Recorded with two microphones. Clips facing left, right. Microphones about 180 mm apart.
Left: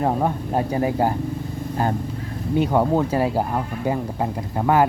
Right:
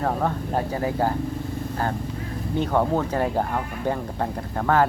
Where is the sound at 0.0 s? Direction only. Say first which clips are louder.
Left 3 dB; 15° left (ahead or behind).